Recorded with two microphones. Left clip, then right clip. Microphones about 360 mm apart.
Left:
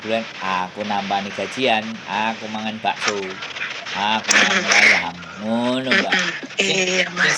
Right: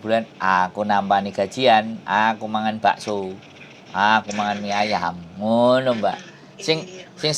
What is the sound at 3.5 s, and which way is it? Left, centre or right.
Duck, left.